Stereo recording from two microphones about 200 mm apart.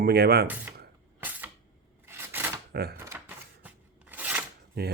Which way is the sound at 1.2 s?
10° right (ahead or behind).